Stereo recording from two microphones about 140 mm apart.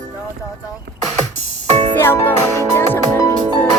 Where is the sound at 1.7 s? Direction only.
55° right (ahead or behind).